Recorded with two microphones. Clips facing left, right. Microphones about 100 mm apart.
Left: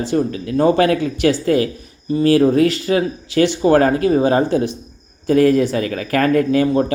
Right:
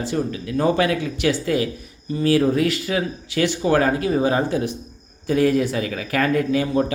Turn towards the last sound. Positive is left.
turn(degrees=45)  # may be behind; listen again after turning